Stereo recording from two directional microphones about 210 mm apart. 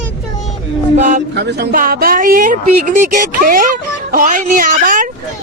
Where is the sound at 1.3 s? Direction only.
50° right (ahead or behind).